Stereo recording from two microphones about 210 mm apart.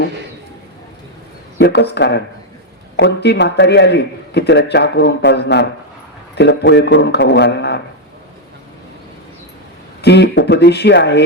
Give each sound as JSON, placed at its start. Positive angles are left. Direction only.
{"t": 1.5, "sound": "a man's voice", "side_deg": 55}
{"t": 10.0, "sound": "speech", "side_deg": 55}